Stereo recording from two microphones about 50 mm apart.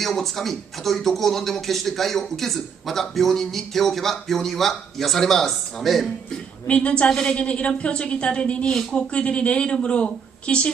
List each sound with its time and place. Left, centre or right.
0.0 s speech: centre
6.7 s speech: left
7.1 s a woman's voice: centre
7.3 s speech: left